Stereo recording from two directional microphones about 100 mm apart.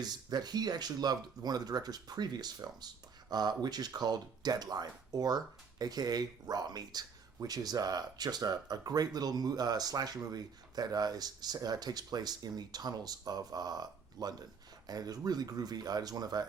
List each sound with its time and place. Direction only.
0.0 s speech: 45° right (ahead or behind)